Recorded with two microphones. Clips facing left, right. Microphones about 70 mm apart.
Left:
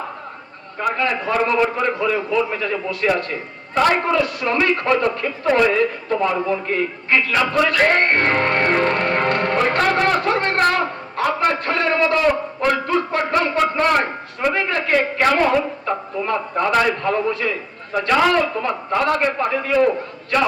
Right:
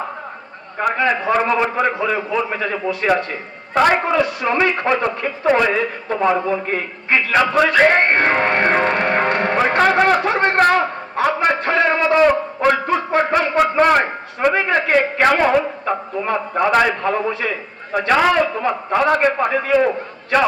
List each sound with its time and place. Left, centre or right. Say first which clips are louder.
0.8 s a man's voice: right 3 dB; right